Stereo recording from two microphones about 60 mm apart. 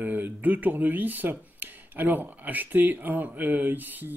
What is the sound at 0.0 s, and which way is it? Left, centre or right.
Speech, right.